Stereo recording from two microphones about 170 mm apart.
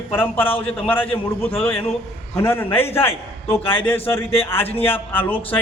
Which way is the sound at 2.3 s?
15° left (ahead or behind).